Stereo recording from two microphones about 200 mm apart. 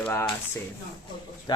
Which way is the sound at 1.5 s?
20° left (ahead or behind).